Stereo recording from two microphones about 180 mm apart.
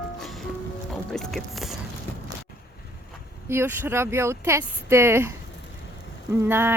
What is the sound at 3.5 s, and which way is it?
Speech, 10° right (ahead or behind).